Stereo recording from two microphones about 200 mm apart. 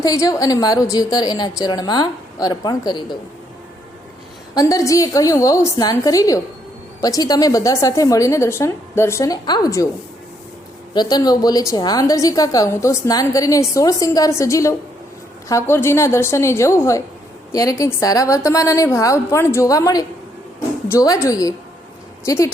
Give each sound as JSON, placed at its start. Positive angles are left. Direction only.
{"t": 0.0, "sound": "a woman's voice", "side_deg": 15}
{"t": 4.5, "sound": "a woman's voice", "side_deg": 15}
{"t": 10.9, "sound": "a woman's voice", "side_deg": 20}